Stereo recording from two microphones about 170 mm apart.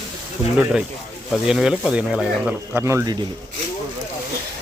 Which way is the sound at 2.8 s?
20° right (ahead or behind).